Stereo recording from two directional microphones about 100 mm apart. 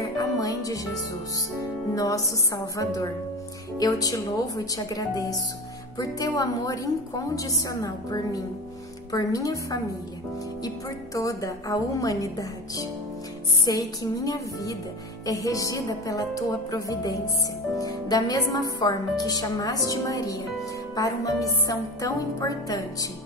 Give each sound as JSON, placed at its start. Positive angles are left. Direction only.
{"t": 0.2, "sound": "music", "side_deg": 35}
{"t": 2.0, "sound": "a woman's voice", "side_deg": 35}
{"t": 11.1, "sound": "a woman's voice", "side_deg": 35}